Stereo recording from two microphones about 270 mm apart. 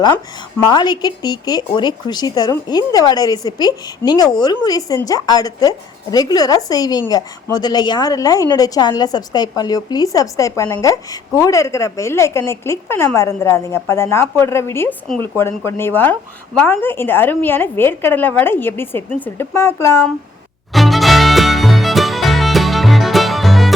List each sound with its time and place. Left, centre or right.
0.6 s a woman's voice: centre
20.7 s music: centre